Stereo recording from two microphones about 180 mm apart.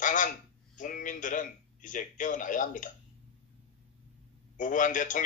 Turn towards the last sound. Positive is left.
turn(degrees=45)  # may be behind; listen again after turning